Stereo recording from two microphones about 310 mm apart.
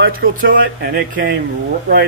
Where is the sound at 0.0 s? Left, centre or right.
Right.